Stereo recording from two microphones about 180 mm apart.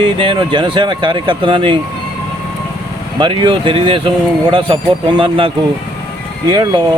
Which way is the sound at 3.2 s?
25° right (ahead or behind).